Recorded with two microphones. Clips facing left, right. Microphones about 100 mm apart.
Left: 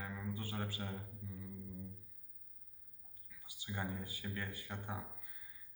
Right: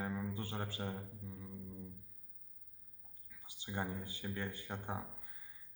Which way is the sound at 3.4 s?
30° right (ahead or behind).